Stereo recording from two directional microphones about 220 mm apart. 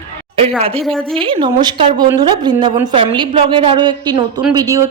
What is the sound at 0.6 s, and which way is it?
A woman's voice, 25° right (ahead or behind).